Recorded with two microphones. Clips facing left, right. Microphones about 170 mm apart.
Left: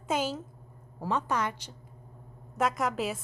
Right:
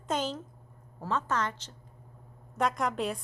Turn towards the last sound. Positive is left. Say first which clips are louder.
# even
turn(degrees=5)  # may be behind; listen again after turning